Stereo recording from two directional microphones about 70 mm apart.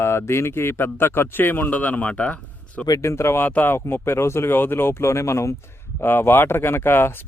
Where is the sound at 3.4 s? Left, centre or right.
Left.